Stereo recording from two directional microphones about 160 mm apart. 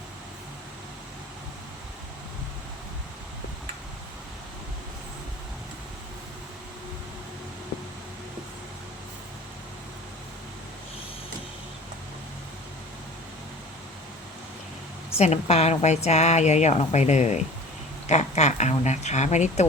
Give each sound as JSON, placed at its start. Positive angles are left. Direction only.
{"t": 15.2, "sound": "a woman's voice", "side_deg": 40}